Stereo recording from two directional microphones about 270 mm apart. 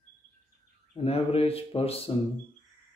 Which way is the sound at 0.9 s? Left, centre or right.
Left.